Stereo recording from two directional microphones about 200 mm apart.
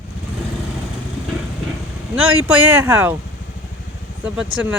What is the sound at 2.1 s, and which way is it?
Speech, 90° right.